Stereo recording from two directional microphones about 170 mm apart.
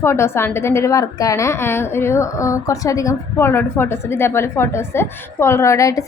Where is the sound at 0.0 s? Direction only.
15° left (ahead or behind).